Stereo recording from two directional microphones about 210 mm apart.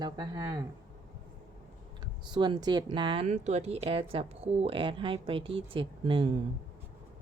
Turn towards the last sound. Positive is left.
turn(degrees=-25)  # may be behind; listen again after turning